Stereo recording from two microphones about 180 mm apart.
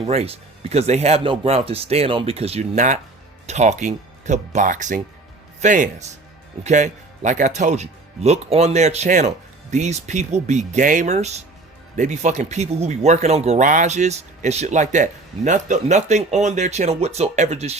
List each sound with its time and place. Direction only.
0.0 s speech: 35° right (ahead or behind)